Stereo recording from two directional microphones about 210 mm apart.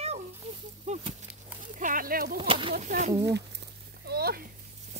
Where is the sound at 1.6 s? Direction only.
40° right (ahead or behind).